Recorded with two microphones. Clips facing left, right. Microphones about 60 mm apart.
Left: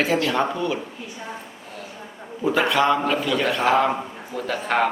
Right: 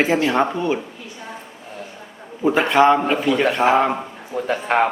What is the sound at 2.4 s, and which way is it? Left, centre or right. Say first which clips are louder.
A man's voice: right 5 dB; right.